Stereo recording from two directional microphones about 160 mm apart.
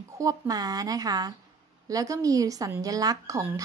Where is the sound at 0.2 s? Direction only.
20° right (ahead or behind).